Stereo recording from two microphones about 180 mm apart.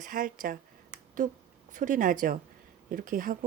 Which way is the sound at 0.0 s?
50° right (ahead or behind).